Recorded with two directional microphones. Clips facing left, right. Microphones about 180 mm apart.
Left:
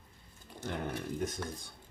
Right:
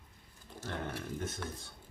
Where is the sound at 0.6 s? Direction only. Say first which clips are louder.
Left 3 dB; 15° left (ahead or behind).